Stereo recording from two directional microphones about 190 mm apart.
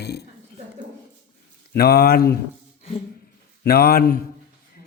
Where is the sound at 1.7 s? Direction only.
55° left (ahead or behind).